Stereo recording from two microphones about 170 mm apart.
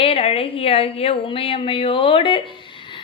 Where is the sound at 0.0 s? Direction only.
35° left (ahead or behind).